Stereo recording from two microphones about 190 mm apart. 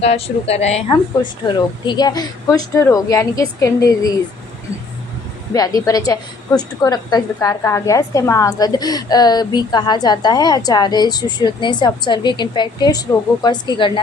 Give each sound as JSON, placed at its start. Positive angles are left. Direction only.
{"t": 0.0, "sound": "a woman's voice", "side_deg": 30}
{"t": 5.5, "sound": "a woman's voice", "side_deg": 20}